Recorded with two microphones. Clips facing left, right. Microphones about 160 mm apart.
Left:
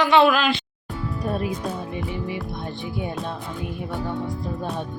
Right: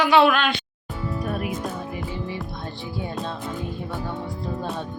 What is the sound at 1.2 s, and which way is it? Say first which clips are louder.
Speech: left 4 dB; 35° left (ahead or behind).